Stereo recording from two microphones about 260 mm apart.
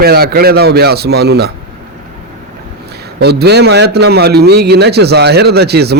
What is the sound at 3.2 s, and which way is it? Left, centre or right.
A man's voice, right.